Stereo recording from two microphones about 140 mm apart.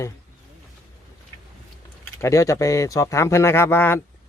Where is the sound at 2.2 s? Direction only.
20° left (ahead or behind).